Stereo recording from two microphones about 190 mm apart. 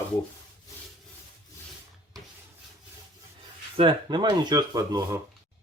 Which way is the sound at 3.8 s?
25° right (ahead or behind).